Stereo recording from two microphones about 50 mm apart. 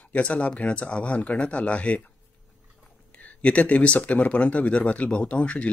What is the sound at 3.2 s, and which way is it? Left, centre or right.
Speech, left.